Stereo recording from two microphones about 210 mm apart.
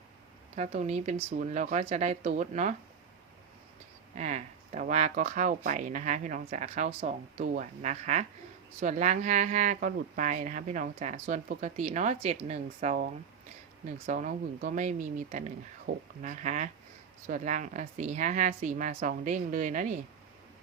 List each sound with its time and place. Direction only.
0.5 s speech: 30° right (ahead or behind)
4.2 s speech: 35° right (ahead or behind)